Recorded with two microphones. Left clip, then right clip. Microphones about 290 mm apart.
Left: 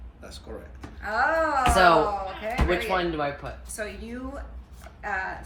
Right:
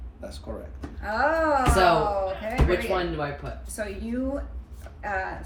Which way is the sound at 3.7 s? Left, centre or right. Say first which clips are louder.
Right 5 dB; centre.